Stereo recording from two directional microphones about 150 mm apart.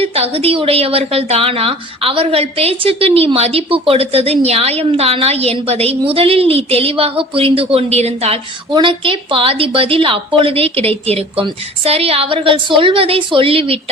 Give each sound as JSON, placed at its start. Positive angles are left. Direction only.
{"t": 0.0, "sound": "a woman's voice", "side_deg": -40}